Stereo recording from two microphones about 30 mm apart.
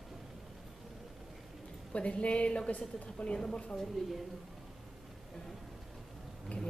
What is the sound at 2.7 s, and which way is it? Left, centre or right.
Speech, left.